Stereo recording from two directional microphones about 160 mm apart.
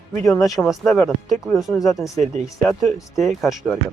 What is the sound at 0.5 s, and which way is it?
Speech, centre (ahead or behind).